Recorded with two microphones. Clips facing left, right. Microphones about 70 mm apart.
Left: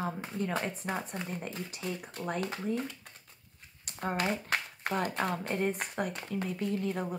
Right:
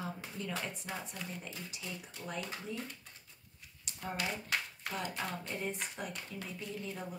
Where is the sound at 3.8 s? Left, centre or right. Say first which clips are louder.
Left 7 dB; left.